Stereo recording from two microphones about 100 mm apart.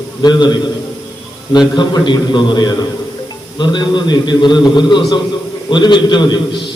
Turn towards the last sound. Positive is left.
turn(degrees=50)  # may be behind; listen again after turning